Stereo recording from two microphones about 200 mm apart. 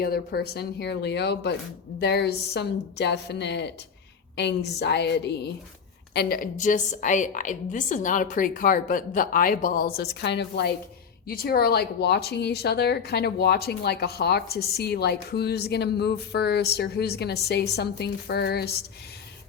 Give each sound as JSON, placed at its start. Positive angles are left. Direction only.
{"t": 0.0, "sound": "a woman's voice", "side_deg": 50}